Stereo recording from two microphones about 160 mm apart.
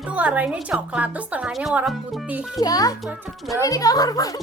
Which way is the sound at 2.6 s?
25° left (ahead or behind).